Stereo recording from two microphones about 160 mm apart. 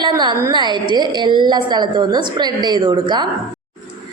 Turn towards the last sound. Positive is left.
turn(degrees=-30)  # may be behind; listen again after turning